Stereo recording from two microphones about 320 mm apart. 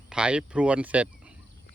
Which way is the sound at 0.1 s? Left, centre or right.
Centre.